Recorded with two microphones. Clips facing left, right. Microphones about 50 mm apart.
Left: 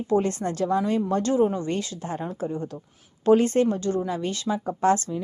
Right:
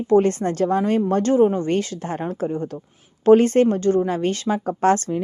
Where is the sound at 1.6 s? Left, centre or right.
Right.